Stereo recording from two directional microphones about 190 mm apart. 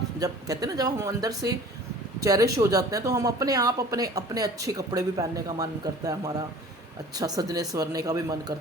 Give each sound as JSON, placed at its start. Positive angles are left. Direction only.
{"t": 0.2, "sound": "speech", "side_deg": -20}